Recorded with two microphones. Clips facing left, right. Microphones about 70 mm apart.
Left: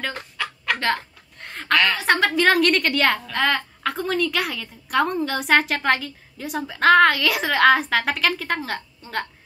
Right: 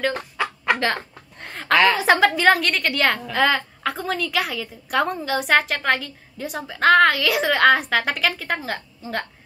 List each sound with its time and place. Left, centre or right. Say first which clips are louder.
0.1 s chicken: right 4 dB; centre
0.7 s a woman's voice: even; centre